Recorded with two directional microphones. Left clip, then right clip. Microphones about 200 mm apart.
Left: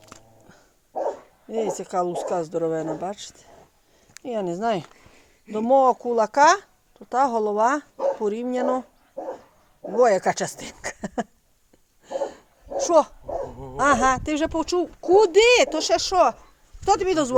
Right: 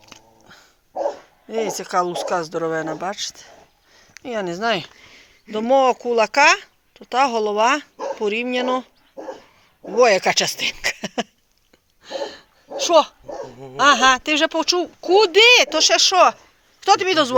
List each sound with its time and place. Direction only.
0.4 s dog: 15° left (ahead or behind)
1.5 s speech: 5° left (ahead or behind)
9.9 s speech: 10° left (ahead or behind)
12.0 s a sound: 15° left (ahead or behind)
13.7 s speech: 15° left (ahead or behind)